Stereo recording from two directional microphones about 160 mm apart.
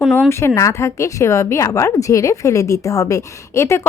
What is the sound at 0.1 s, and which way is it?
Speech, 15° left (ahead or behind).